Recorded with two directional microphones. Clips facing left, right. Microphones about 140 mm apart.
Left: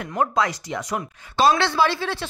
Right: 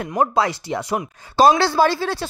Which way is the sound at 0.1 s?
30° right (ahead or behind).